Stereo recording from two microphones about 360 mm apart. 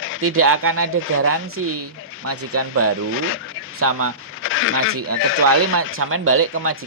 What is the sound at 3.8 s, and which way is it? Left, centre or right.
Speech, right.